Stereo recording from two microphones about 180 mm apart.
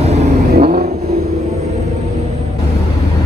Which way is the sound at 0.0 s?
40° right (ahead or behind).